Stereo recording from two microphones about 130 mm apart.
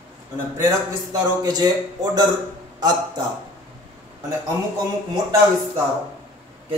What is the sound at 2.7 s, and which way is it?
Speech, 30° right (ahead or behind).